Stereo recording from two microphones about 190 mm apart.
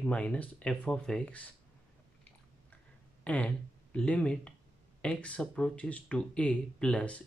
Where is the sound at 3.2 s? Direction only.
5° left (ahead or behind).